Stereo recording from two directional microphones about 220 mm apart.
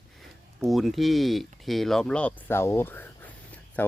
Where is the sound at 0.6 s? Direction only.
Centre (ahead or behind).